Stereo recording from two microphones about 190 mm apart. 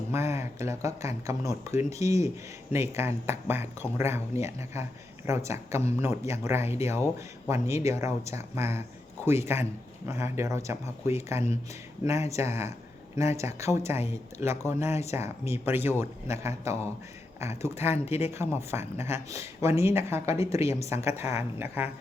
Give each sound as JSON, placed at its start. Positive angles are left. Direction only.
{"t": 0.1, "sound": "speech", "side_deg": -15}
{"t": 17.9, "sound": "speech", "side_deg": 35}
{"t": 18.3, "sound": "speech", "side_deg": -15}